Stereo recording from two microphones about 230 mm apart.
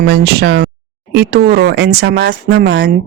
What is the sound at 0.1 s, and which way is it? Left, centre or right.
Speech, right.